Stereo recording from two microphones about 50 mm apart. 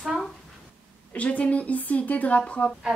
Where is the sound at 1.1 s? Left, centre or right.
Left.